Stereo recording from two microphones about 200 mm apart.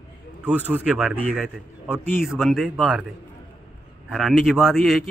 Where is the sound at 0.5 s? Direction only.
10° right (ahead or behind).